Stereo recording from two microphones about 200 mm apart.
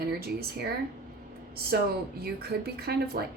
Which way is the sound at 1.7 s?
50° right (ahead or behind).